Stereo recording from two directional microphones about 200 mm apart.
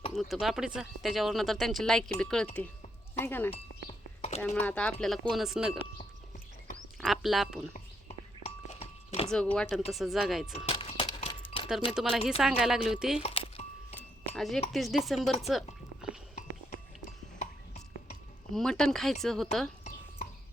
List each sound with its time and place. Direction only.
0.1 s speech: centre (ahead or behind)
3.5 s a sound: 30° left (ahead or behind)
4.4 s speech: 5° left (ahead or behind)
7.0 s speech: centre (ahead or behind)
7.7 s a sound: 30° left (ahead or behind)
9.3 s speech: 5° left (ahead or behind)
10.7 s a sound: 25° left (ahead or behind)
12.4 s speech: centre (ahead or behind)
13.2 s music: 30° left (ahead or behind)
13.9 s a sound: centre (ahead or behind)
14.7 s speech: centre (ahead or behind)
17.4 s music: 35° left (ahead or behind)
18.5 s speech: 5° left (ahead or behind)